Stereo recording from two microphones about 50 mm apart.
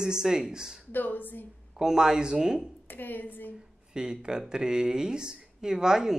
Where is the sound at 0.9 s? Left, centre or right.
Left.